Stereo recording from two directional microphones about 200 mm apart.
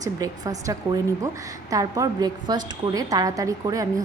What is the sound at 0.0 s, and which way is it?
A woman's voice, 15° right (ahead or behind).